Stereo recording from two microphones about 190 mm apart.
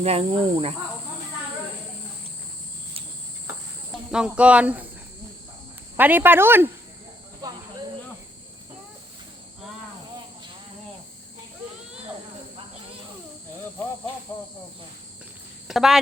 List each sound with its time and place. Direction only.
0.0 s speech: 30° right (ahead or behind)
4.1 s speech: 5° right (ahead or behind)
6.0 s speech: 10° right (ahead or behind)
15.6 s speech: centre (ahead or behind)